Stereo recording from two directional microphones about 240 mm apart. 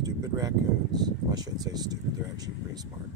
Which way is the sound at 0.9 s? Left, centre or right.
Centre.